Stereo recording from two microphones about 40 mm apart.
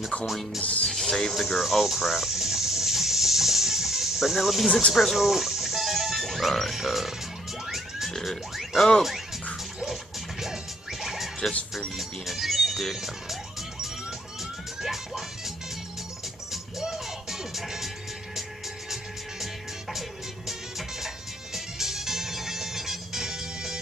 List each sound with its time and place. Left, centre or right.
0.6 s speech: left
0.8 s speech: centre
1.3 s a sound: centre
4.9 s music: centre
6.7 s speech: centre
8.1 s pig: centre
10.4 s music: centre
16.8 s music: centre
19.4 s music: centre
21.5 s music: centre